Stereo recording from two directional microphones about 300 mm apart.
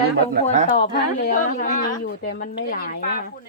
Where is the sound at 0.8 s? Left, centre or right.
Left.